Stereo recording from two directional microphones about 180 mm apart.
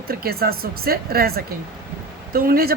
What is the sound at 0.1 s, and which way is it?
Speech, 60° right (ahead or behind).